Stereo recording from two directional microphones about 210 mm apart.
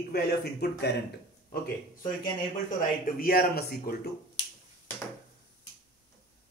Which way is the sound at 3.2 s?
45° left (ahead or behind).